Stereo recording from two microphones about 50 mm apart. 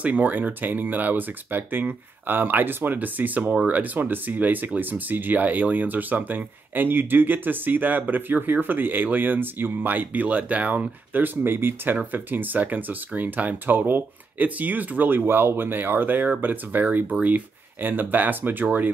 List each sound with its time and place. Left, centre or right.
0.0 s speech: right